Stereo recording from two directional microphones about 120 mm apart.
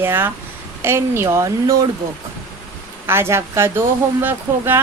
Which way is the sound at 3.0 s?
20° right (ahead or behind).